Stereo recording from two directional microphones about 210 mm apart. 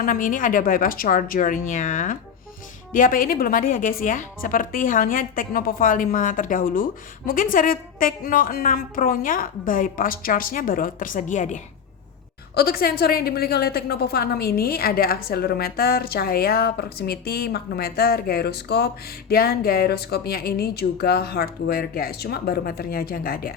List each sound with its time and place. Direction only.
0.0 s a woman's voice: 40° left (ahead or behind)